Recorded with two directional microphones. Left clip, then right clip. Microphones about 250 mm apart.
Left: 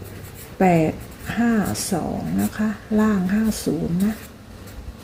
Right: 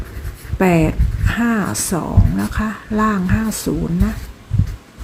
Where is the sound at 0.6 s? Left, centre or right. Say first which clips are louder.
Right 2 dB; centre.